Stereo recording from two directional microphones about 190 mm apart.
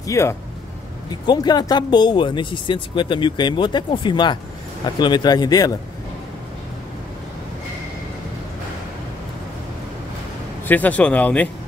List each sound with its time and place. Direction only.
0.0 s speech: 15° left (ahead or behind)
10.7 s speech: 10° left (ahead or behind)